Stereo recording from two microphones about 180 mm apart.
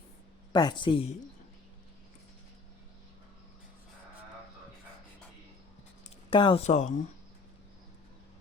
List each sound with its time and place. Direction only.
0.5 s speech: 25° left (ahead or behind)
6.3 s speech: 30° left (ahead or behind)